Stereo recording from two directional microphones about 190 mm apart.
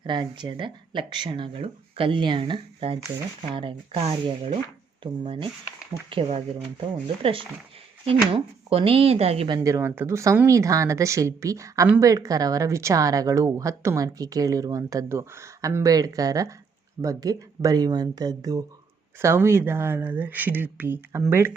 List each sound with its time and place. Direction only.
0.0 s speech: 25° right (ahead or behind)
8.7 s speech: 30° right (ahead or behind)
9.6 s speech: 15° right (ahead or behind)